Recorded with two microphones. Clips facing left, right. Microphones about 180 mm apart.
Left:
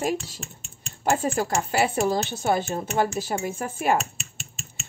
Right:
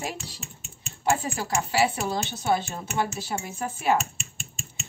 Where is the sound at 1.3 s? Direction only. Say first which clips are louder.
Left 2 dB; 50° left (ahead or behind).